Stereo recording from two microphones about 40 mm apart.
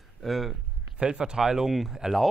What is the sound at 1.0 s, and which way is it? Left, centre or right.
Speech, right.